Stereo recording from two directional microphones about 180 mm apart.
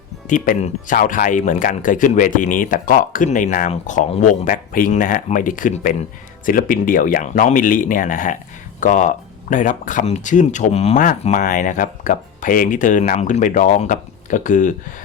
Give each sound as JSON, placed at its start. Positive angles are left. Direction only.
{"t": 0.3, "sound": "speech", "side_deg": 45}